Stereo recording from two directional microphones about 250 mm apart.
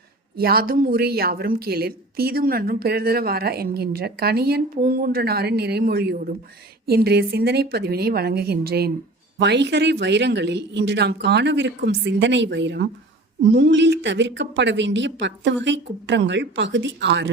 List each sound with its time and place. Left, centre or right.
0.3 s speech: right